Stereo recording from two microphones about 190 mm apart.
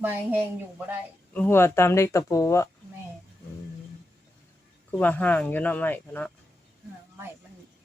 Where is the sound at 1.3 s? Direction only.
10° left (ahead or behind).